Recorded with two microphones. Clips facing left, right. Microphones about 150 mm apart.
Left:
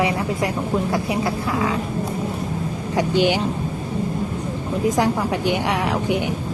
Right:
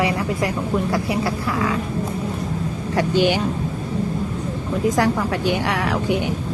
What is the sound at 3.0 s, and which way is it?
Speech, 20° left (ahead or behind).